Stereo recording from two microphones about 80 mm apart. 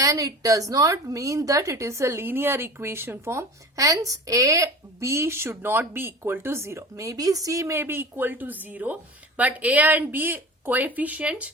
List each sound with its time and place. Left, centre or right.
0.0 s a woman's voice: right; by 11.5 s centre